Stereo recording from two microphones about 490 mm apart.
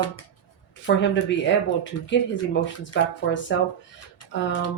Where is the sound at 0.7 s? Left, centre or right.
Left.